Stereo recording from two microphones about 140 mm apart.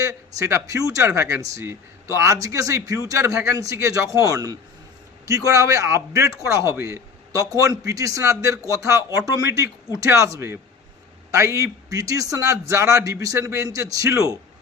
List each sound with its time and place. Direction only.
0.1 s speech: 20° right (ahead or behind)